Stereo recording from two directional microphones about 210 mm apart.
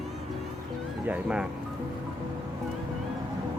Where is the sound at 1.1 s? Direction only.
5° right (ahead or behind).